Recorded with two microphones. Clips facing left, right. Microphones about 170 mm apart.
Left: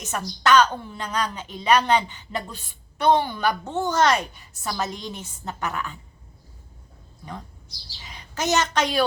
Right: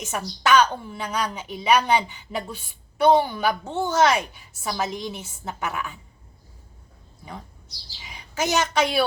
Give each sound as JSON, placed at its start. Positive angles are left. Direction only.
{"t": 0.0, "sound": "a woman's voice", "side_deg": -10}
{"t": 8.0, "sound": "a woman's voice", "side_deg": -10}